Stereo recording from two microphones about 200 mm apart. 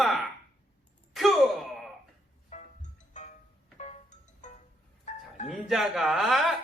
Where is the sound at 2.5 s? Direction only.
35° left (ahead or behind).